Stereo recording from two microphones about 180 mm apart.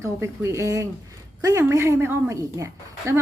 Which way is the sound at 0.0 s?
15° right (ahead or behind).